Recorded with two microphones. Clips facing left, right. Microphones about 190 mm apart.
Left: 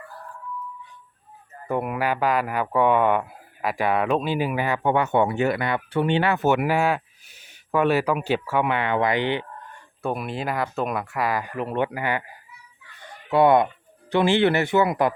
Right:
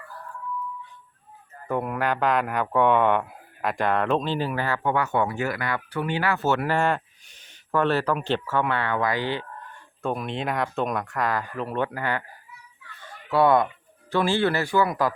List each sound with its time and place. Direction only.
1.6 s speech: 10° left (ahead or behind)
10.0 s speech: 5° left (ahead or behind)
13.0 s a sound: 20° left (ahead or behind)
14.1 s speech: 20° left (ahead or behind)